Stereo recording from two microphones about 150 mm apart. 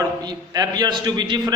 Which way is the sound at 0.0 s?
25° right (ahead or behind).